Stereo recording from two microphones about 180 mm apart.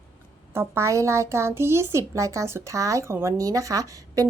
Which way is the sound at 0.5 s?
15° right (ahead or behind).